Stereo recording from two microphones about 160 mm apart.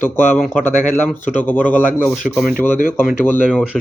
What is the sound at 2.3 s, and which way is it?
Speech, centre (ahead or behind).